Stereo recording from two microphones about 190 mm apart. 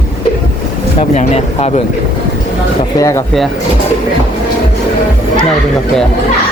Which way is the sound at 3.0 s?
15° left (ahead or behind).